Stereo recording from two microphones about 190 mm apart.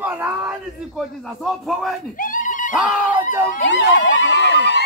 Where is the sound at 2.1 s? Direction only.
45° left (ahead or behind).